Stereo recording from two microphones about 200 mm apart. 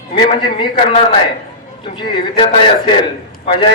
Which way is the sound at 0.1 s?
25° left (ahead or behind).